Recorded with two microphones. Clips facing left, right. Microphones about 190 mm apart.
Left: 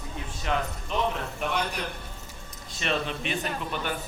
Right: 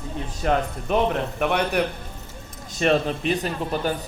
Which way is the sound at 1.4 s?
65° right (ahead or behind).